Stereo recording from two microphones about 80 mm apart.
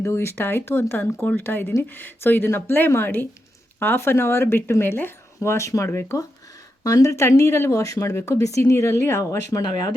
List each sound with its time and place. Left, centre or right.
0.0 s speech: left